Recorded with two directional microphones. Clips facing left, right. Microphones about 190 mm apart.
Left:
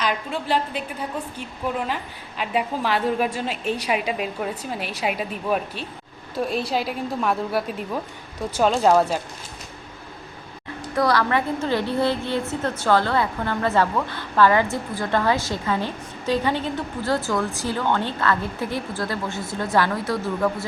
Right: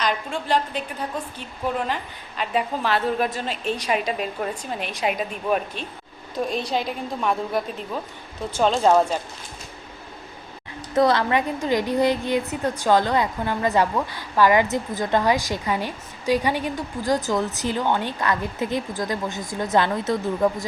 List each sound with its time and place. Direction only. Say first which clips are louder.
0.0 s a woman's voice: even; 5° left (ahead or behind)
2.4 s a woman's voice: even; 10° left (ahead or behind)
10.9 s a woman's voice: right 2 dB; 25° right (ahead or behind)